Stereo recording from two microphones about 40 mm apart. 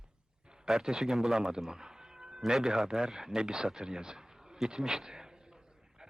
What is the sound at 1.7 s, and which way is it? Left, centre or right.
Music, centre.